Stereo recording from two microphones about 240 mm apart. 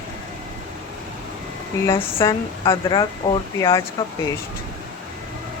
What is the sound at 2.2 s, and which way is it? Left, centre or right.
A woman's voice, left.